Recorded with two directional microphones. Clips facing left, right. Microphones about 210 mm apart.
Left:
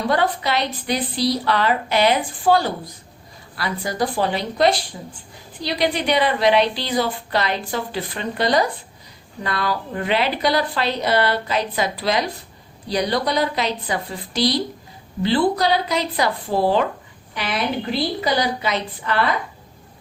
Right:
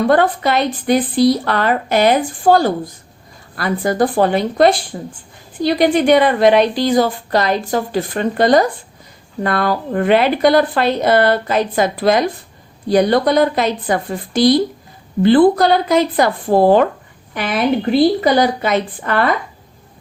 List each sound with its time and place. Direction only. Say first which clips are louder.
0.1 s a woman's voice: right 6 dB; 50° right (ahead or behind)